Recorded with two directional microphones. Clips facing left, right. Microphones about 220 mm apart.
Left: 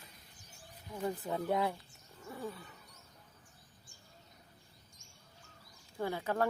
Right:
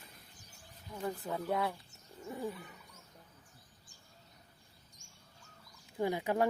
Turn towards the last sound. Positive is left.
turn(degrees=-15)  # may be behind; listen again after turning